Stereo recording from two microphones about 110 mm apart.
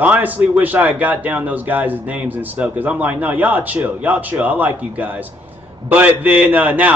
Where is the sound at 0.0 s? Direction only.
15° right (ahead or behind).